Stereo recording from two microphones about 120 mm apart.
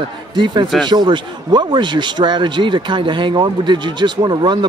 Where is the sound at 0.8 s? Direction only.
40° right (ahead or behind).